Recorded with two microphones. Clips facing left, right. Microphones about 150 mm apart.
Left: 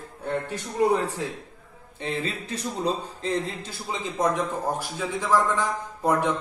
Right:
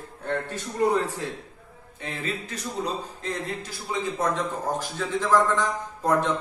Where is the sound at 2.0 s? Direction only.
30° left (ahead or behind).